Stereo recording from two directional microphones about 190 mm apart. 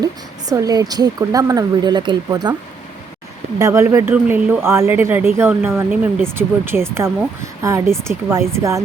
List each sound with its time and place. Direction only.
0.0 s speech: 20° right (ahead or behind)
3.6 s speech: 15° right (ahead or behind)